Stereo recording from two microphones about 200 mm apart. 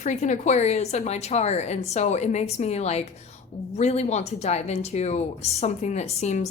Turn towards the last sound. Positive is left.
turn(degrees=35)  # may be behind; listen again after turning